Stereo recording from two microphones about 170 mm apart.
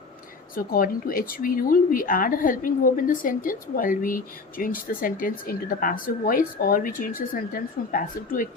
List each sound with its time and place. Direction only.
0.5 s speech: 55° left (ahead or behind)